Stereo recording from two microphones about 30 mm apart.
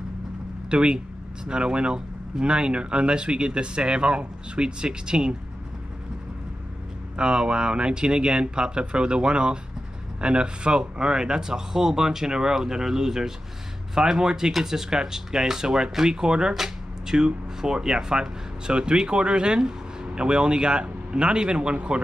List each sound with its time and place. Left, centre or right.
0.7 s speech: right
7.2 s speech: right